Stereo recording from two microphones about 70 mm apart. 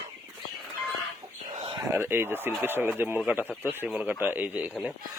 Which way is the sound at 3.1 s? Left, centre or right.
Centre.